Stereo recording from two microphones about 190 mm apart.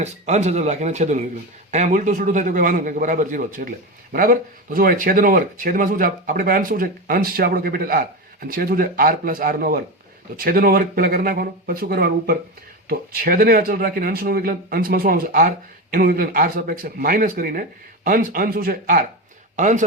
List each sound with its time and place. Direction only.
0.0 s a man's voice: 35° right (ahead or behind)